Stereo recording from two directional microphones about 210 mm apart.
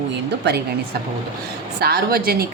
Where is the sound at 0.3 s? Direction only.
55° right (ahead or behind).